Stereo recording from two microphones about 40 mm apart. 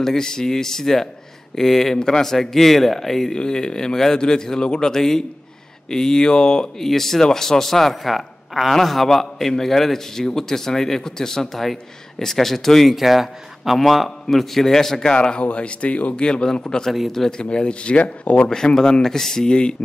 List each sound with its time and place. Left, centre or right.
0.0 s speech: centre
2.3 s speech: centre
3.3 s speech: centre
12.9 s speech: centre
15.0 s speech: left
16.3 s speech: left
18.8 s speech: centre